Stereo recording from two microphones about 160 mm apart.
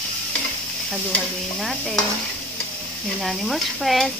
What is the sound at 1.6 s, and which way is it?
Speech, centre (ahead or behind).